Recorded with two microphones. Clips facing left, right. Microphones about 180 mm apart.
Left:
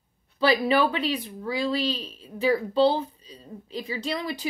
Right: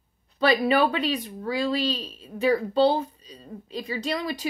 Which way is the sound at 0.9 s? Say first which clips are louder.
Right 1 dB; 30° left (ahead or behind).